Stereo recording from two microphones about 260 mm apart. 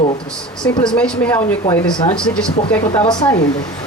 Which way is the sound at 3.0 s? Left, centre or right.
Centre.